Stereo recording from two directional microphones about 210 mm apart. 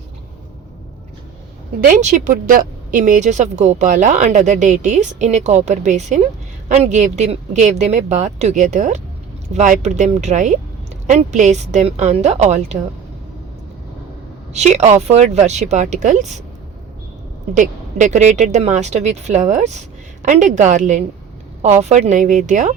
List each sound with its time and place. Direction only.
1.8 s speech: 35° right (ahead or behind)
14.5 s speech: 30° right (ahead or behind)
17.5 s speech: 35° right (ahead or behind)